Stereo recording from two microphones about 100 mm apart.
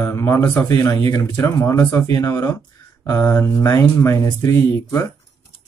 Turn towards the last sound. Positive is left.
turn(degrees=30)  # may be behind; listen again after turning